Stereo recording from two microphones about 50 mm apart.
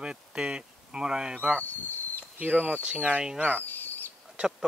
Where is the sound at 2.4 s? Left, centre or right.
Right.